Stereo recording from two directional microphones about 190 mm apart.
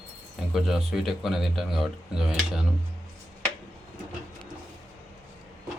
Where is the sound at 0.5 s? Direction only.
Centre (ahead or behind).